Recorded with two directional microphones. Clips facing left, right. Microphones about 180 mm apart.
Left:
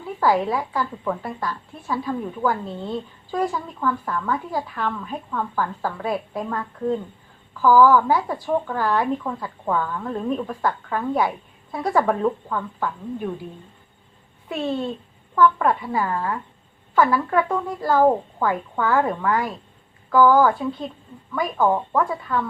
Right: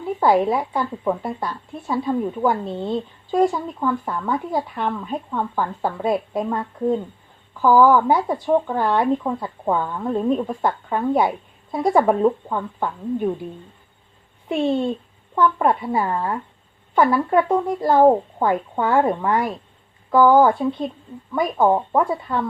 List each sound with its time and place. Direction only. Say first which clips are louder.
0.2 s speech: right 3 dB; 20° right (ahead or behind)
15.4 s speech: even; 25° right (ahead or behind)